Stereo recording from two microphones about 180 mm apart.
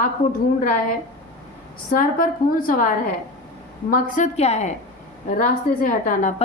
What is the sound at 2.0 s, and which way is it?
Speech, 50° left (ahead or behind).